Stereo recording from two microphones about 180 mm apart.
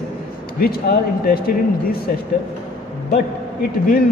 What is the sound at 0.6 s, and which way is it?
Speech, 55° left (ahead or behind).